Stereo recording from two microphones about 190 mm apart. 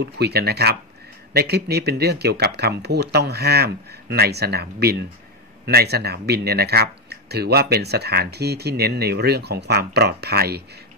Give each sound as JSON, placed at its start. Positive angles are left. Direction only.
{"t": 0.0, "sound": "speech", "side_deg": -55}